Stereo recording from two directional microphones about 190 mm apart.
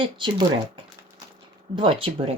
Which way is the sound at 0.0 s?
25° right (ahead or behind).